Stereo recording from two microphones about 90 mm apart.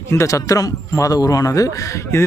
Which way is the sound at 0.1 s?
35° left (ahead or behind).